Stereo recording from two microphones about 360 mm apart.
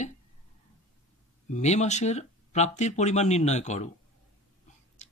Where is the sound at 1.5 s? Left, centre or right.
Centre.